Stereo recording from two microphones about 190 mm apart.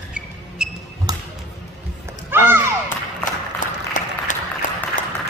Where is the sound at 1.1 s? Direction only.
20° right (ahead or behind).